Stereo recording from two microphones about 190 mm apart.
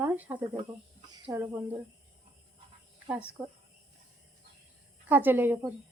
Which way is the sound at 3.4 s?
5° right (ahead or behind).